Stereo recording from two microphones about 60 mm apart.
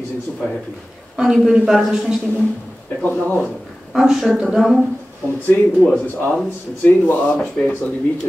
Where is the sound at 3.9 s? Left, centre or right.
Centre.